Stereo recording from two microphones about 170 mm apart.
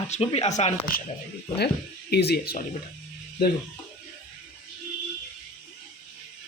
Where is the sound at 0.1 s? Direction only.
35° left (ahead or behind).